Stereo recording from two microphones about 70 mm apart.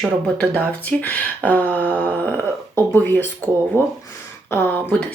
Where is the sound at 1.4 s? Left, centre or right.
Left.